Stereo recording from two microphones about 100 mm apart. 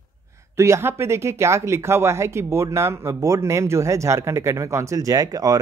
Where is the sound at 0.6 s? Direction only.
30° right (ahead or behind).